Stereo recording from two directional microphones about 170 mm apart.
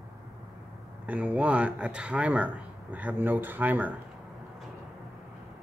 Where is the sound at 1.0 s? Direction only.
10° right (ahead or behind).